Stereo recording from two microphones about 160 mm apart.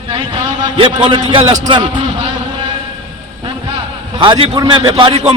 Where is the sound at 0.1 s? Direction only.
30° right (ahead or behind).